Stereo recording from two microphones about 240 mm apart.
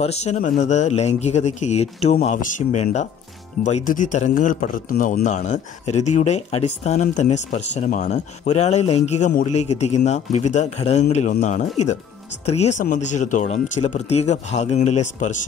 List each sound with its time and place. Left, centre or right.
0.0 s a man's voice: left